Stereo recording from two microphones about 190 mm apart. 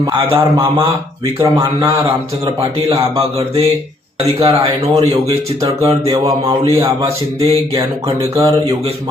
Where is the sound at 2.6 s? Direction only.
30° right (ahead or behind).